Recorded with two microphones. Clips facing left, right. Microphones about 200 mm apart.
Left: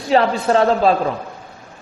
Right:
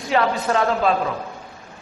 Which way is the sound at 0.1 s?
30° left (ahead or behind).